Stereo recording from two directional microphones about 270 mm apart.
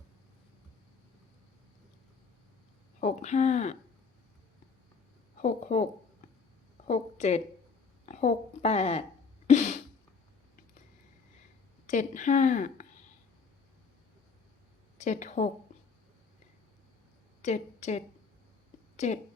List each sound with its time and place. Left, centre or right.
3.0 s a woman's voice: left
5.4 s a woman's voice: left
11.9 s a woman's voice: left
14.9 s speech: left
17.4 s a woman's voice: left